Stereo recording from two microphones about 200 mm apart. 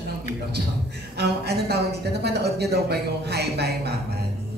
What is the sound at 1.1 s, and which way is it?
A man's voice, 55° right (ahead or behind).